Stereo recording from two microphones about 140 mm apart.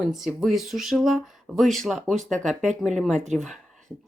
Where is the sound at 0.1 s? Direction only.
Centre (ahead or behind).